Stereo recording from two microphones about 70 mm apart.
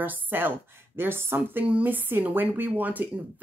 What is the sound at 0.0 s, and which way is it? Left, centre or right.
Speech, right.